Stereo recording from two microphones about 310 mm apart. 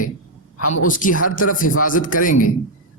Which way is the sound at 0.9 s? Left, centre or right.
Left.